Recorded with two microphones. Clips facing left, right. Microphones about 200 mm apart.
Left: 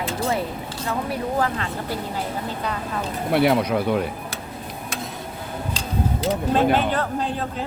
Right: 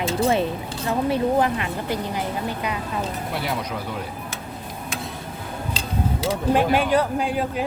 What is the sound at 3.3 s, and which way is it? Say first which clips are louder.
Speech: left 14 dB; 65° left (ahead or behind).